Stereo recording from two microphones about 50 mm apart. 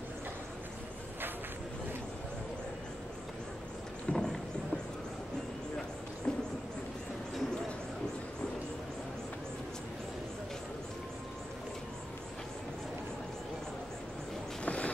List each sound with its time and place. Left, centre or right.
4.1 s clip-clop: centre
6.3 s a sound: centre
14.6 s vehicle: left